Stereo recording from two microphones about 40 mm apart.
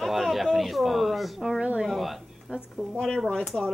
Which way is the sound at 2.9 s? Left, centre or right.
Centre.